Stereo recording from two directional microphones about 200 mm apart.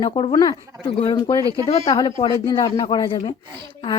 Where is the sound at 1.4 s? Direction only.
15° right (ahead or behind).